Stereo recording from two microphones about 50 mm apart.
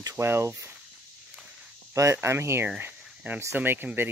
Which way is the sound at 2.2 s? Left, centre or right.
Right.